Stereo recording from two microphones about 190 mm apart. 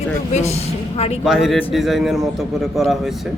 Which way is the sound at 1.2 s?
Centre (ahead or behind).